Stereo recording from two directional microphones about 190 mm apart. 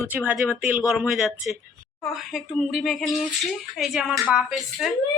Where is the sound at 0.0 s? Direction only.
10° right (ahead or behind).